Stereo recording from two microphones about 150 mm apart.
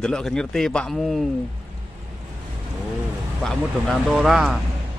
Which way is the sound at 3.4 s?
Centre (ahead or behind).